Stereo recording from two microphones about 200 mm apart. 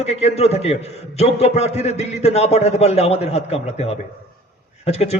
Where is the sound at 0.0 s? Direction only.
30° left (ahead or behind).